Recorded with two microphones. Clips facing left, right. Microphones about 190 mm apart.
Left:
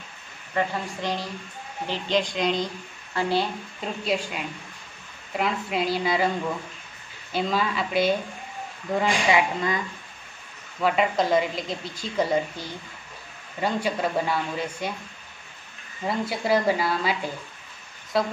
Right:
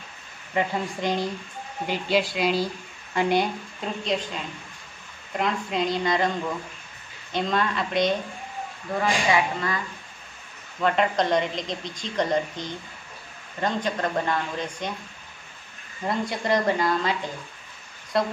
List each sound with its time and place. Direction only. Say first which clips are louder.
0.6 s a woman's voice: right 1 dB; 20° right (ahead or behind)
1.9 s a woman's voice: right 1 dB; 10° right (ahead or behind)
3.2 s a woman's voice: right 2 dB; 15° right (ahead or behind)
4.0 s a man's voice: left 2 dB; 5° left (ahead or behind)
7.3 s a woman's voice: even; 5° left (ahead or behind)
9.0 s speech: even; 20° left (ahead or behind)
10.8 s a woman's voice: even; 5° left (ahead or behind)
16.1 s a man's voice: left 1 dB; 5° left (ahead or behind)